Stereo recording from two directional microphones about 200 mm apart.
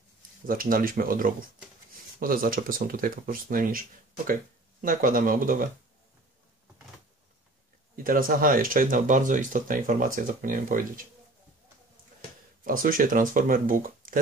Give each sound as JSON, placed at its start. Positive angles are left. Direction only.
{"t": 0.5, "sound": "speech", "side_deg": -45}
{"t": 4.8, "sound": "speech", "side_deg": -45}
{"t": 7.9, "sound": "speech", "side_deg": -45}
{"t": 12.6, "sound": "speech", "side_deg": -45}